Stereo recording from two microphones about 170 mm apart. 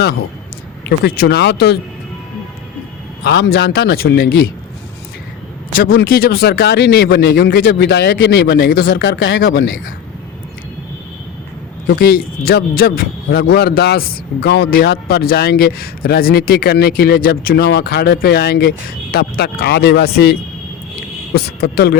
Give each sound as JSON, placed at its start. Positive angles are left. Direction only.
{"t": 0.9, "sound": "a man's voice", "side_deg": 65}
{"t": 3.2, "sound": "a man's voice", "side_deg": 80}
{"t": 5.7, "sound": "a man's voice", "side_deg": 60}
{"t": 11.9, "sound": "a man's voice", "side_deg": 75}
{"t": 21.3, "sound": "a man's voice", "side_deg": 65}